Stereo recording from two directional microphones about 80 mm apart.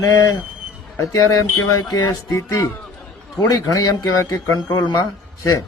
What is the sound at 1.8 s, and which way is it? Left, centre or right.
A man's voice, left.